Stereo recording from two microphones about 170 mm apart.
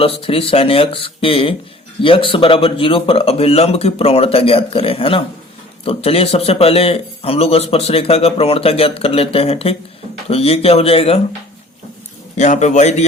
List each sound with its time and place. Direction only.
0.0 s a man's voice: 35° left (ahead or behind)
12.4 s a man's voice: 45° left (ahead or behind)